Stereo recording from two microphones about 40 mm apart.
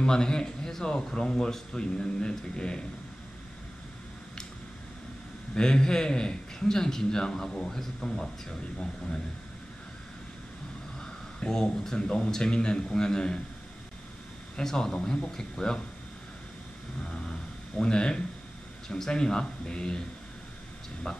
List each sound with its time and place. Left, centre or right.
0.0 s speech: centre
5.5 s a man's voice: centre
11.3 s speech: left
14.6 s a man's voice: centre
15.0 s a man's voice: left
17.0 s a man's voice: left